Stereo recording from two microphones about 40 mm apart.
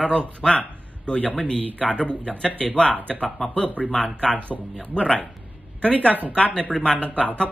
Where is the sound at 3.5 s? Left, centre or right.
Left.